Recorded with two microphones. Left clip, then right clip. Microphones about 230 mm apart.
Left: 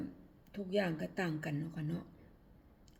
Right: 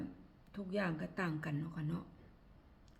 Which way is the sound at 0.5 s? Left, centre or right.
Centre.